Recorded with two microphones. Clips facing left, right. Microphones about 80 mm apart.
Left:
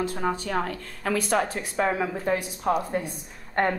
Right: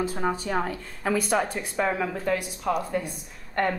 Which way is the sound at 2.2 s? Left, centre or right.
Left.